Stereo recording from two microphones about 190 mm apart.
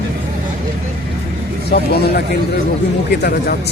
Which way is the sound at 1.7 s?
60° left (ahead or behind).